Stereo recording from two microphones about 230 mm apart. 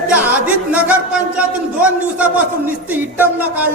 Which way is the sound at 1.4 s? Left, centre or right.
Centre.